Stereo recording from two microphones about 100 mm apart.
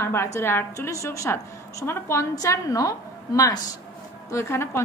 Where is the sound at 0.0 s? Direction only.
25° left (ahead or behind).